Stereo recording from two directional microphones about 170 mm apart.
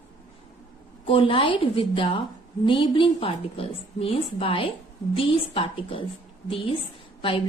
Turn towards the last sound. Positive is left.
turn(degrees=30)  # may be behind; listen again after turning